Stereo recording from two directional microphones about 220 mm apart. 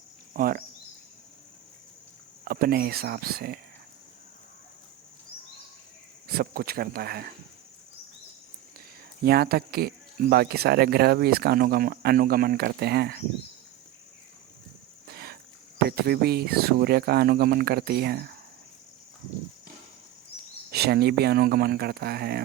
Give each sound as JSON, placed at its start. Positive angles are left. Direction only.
{"t": 0.3, "sound": "speech", "side_deg": -40}
{"t": 2.4, "sound": "speech", "side_deg": -45}
{"t": 6.2, "sound": "speech", "side_deg": -45}
{"t": 9.2, "sound": "speech", "side_deg": -45}
{"t": 15.0, "sound": "a sound", "side_deg": -45}
{"t": 15.9, "sound": "speech", "side_deg": -45}
{"t": 20.7, "sound": "speech", "side_deg": -45}